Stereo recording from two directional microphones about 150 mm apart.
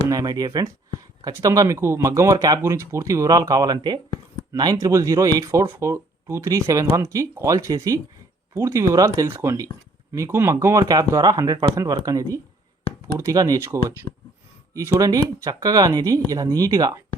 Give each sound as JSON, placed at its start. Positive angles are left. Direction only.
{"t": 0.1, "sound": "speech", "side_deg": -25}